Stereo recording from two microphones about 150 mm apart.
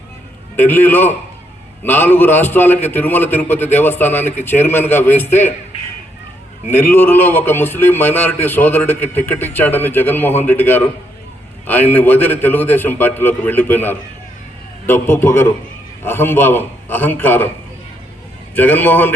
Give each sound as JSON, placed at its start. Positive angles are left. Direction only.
{"t": 0.5, "sound": "a man's voice", "side_deg": 15}
{"t": 6.7, "sound": "a man's voice", "side_deg": 15}
{"t": 18.5, "sound": "a man's voice", "side_deg": 15}